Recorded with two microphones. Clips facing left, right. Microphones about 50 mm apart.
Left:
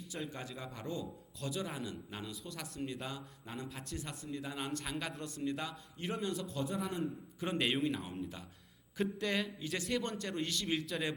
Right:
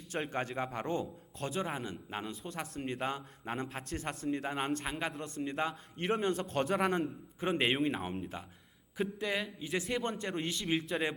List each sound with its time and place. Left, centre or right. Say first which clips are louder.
0.1 s a man's voice: right 8 dB; right
6.1 s a man's voice: right 6 dB; right
7.9 s a man's voice: right 3 dB; right
9.0 s a man's voice: right 1 dB; centre